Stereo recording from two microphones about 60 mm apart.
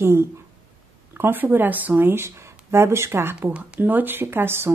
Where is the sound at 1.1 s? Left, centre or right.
Right.